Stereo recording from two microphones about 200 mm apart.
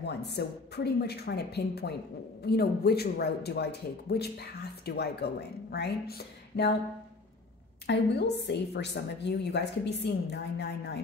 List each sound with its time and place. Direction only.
0.0 s a woman's voice: 55° left (ahead or behind)
7.8 s a woman's voice: 60° left (ahead or behind)